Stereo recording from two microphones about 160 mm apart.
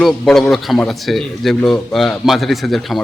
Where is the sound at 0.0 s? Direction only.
Centre (ahead or behind).